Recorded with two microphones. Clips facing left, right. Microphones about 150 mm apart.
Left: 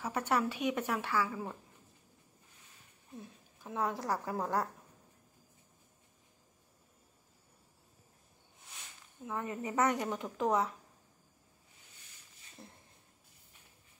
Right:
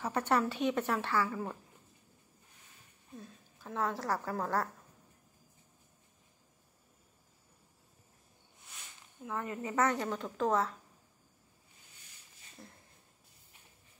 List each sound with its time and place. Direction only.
0.0 s a woman's voice: 10° left (ahead or behind)
3.2 s a woman's voice: 15° left (ahead or behind)
9.2 s a woman's voice: 20° left (ahead or behind)
12.6 s a sound: 25° left (ahead or behind)